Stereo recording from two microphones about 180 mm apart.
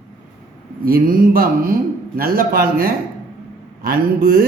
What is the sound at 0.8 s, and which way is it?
Speech, 55° right (ahead or behind).